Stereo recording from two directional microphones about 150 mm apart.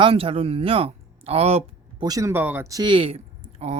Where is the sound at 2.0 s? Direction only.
25° right (ahead or behind); by 3.8 s 45° right (ahead or behind).